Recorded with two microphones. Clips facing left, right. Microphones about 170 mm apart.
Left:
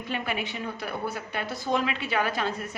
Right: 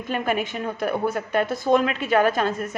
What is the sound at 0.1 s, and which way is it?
Speech, 45° right (ahead or behind).